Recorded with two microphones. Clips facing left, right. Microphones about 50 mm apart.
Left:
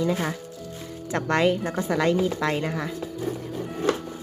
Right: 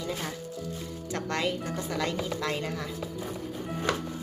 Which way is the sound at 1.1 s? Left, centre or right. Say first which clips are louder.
Left 8 dB; left.